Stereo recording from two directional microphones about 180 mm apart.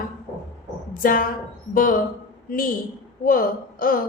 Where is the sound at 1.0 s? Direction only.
50° left (ahead or behind).